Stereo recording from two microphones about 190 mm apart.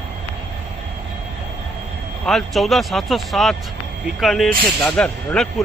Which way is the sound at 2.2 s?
Centre (ahead or behind).